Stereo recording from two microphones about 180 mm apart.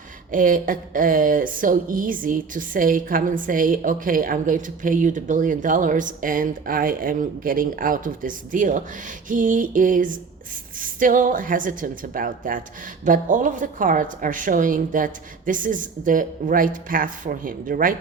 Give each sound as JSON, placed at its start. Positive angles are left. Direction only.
{"t": 0.3, "sound": "a woman's voice", "side_deg": -50}